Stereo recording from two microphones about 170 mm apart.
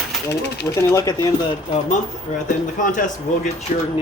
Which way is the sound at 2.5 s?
50° left (ahead or behind).